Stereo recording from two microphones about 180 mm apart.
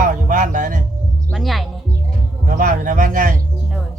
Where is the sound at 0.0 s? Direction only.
45° right (ahead or behind).